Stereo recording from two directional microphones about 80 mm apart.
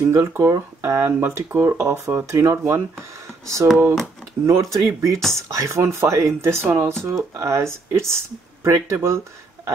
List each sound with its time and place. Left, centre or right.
0.0 s speech: right
0.9 s speech: right